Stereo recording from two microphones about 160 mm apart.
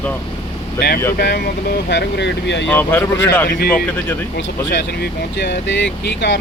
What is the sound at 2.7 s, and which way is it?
Speech, 10° left (ahead or behind).